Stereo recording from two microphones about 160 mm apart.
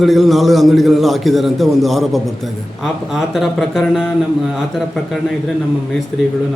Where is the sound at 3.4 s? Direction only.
Centre (ahead or behind).